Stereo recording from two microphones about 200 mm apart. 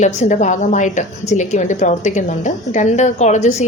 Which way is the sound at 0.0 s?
35° left (ahead or behind).